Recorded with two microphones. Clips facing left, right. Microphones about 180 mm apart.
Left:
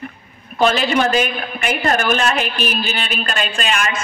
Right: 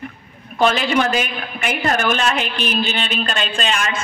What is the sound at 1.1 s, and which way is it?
A man's voice, 15° right (ahead or behind).